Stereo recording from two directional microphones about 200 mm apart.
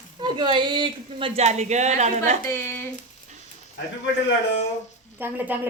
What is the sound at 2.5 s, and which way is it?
Speech, 10° left (ahead or behind).